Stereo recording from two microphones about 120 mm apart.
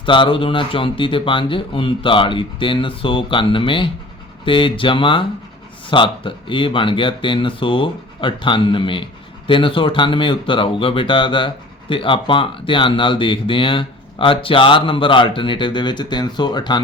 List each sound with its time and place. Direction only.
0.0 s speech: 45° left (ahead or behind)